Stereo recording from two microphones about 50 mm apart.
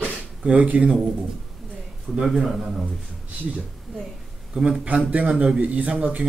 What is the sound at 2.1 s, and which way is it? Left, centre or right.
Speech, centre.